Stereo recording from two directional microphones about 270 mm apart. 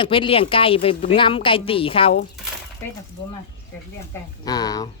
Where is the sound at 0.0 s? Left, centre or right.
Centre.